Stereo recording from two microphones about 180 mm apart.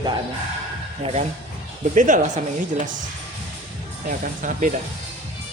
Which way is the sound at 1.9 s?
45° right (ahead or behind).